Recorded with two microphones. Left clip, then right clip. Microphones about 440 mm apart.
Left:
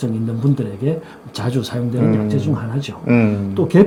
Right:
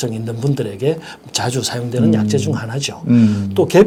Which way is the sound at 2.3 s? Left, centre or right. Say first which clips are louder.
Right 3 dB; right.